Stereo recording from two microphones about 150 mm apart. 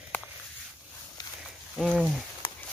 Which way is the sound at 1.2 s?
30° left (ahead or behind).